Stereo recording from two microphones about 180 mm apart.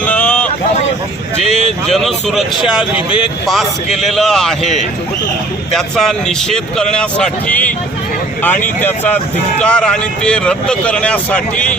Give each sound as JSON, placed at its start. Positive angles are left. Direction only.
{"t": 0.0, "sound": "boat", "side_deg": 10}
{"t": 0.4, "sound": "a sound", "side_deg": 40}
{"t": 1.9, "sound": "speech", "side_deg": 0}
{"t": 3.4, "sound": "speech", "side_deg": 0}
{"t": 5.7, "sound": "speech", "side_deg": 0}